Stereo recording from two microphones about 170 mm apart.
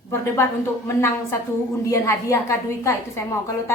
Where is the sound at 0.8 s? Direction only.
15° left (ahead or behind).